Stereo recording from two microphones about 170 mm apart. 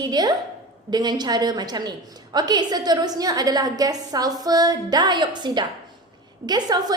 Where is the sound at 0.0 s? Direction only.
25° right (ahead or behind).